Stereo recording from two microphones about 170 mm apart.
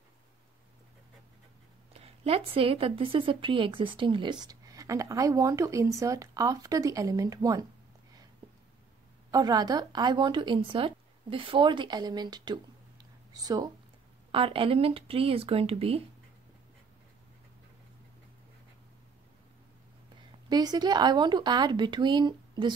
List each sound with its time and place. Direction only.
2.0 s a woman's voice: 35° right (ahead or behind)
9.3 s a woman's voice: 25° right (ahead or behind)
20.4 s a woman's voice: 25° right (ahead or behind)